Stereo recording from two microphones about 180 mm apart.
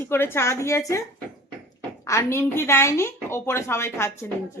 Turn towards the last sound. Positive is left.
turn(degrees=15)  # may be behind; listen again after turning